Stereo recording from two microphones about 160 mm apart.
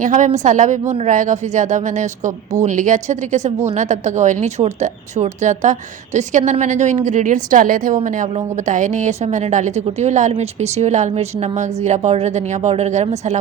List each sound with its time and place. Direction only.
0.0 s a woman's voice: 50° right (ahead or behind)